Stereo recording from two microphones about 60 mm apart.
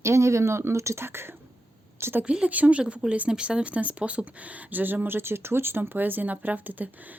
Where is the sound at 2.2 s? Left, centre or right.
Centre.